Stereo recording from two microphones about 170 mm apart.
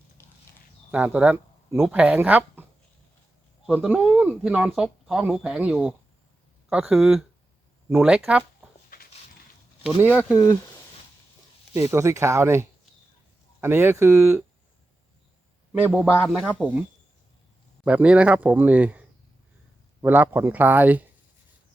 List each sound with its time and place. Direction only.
0.2 s a sound: 15° left (ahead or behind)
0.9 s speech: 10° right (ahead or behind)
3.7 s speech: 5° right (ahead or behind)
10.2 s speech: 10° right (ahead or behind)
11.7 s speech: 20° right (ahead or behind)
15.8 s speech: 5° right (ahead or behind)
17.8 s speech: 5° right (ahead or behind)